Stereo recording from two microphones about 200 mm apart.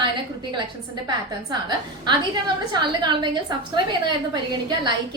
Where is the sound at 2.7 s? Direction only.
20° right (ahead or behind).